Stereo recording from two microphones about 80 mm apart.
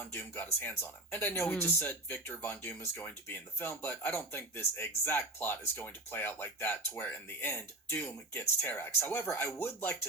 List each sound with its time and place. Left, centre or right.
0.1 s speech: left